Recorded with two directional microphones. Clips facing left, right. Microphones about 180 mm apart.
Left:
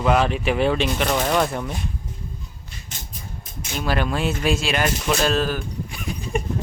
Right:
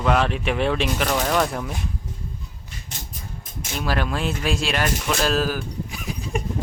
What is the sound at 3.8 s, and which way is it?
Speech, centre (ahead or behind).